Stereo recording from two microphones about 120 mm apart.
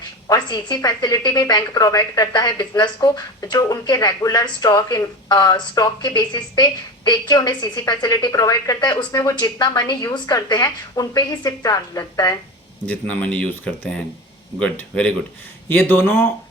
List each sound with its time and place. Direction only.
0.3 s a woman's voice: 35° left (ahead or behind)
12.9 s speech: 15° left (ahead or behind)